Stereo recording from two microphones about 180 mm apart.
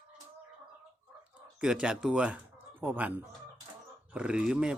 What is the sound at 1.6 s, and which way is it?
Chicken, 5° right (ahead or behind).